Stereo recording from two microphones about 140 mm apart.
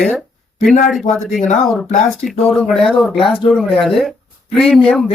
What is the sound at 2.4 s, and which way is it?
Speech, centre (ahead or behind).